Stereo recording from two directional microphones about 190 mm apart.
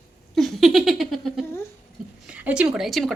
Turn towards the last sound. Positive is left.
turn(degrees=0)  # may be behind; listen again after turning